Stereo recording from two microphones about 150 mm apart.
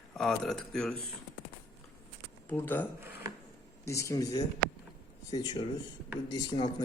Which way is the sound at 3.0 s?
15° right (ahead or behind).